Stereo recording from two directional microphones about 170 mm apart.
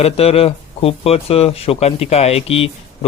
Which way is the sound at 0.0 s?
35° left (ahead or behind).